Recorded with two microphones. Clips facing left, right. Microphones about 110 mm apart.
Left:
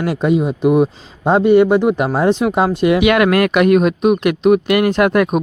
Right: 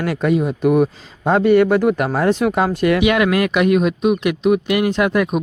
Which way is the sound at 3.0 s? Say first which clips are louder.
Left 3 dB; 60° left (ahead or behind).